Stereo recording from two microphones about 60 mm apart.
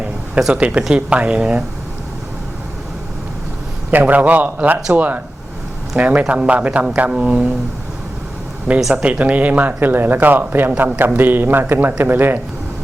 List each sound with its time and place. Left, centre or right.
0.5 s speech: centre
3.9 s speech: right
9.0 s speech: right